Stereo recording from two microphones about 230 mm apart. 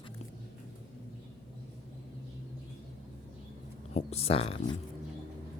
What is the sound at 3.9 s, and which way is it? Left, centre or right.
Speech, left.